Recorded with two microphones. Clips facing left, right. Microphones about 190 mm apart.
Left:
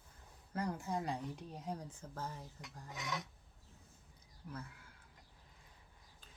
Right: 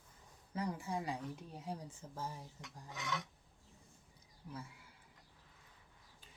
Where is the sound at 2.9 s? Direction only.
10° left (ahead or behind).